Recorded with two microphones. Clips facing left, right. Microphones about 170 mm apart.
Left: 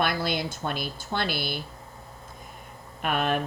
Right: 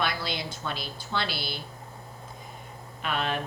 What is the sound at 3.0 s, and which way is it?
Speech, 50° left (ahead or behind).